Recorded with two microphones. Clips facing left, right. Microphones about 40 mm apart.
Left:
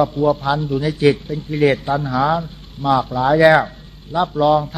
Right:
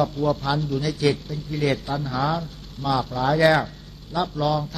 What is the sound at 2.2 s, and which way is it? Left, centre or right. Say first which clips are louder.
Speech: left 7 dB; left.